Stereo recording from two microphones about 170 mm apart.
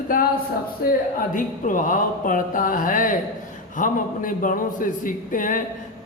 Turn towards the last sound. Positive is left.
turn(degrees=50)  # may be behind; listen again after turning